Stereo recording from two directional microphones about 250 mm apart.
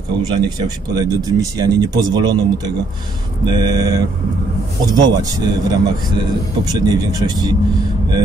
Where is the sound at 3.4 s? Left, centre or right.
Centre.